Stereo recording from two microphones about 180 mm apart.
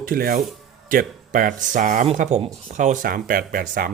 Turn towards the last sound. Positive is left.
turn(degrees=-50)  # may be behind; listen again after turning